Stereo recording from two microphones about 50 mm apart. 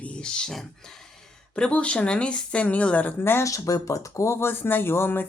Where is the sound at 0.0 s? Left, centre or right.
Left.